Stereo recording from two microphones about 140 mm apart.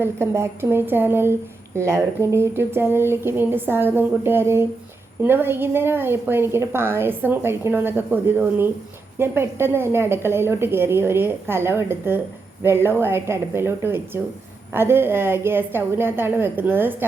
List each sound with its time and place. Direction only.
0.0 s speech: 20° right (ahead or behind)